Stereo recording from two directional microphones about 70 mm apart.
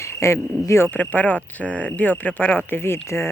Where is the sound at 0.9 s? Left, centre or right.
Left.